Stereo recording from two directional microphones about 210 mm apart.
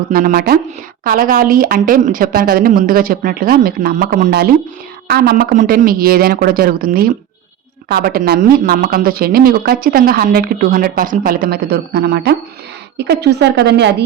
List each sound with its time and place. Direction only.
0.1 s speech: 45° right (ahead or behind)